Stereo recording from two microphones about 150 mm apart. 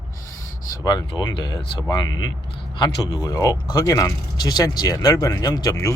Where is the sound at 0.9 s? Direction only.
30° left (ahead or behind).